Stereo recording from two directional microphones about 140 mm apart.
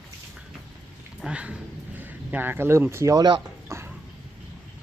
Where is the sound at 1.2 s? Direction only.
10° right (ahead or behind); by 3.4 s 30° right (ahead or behind).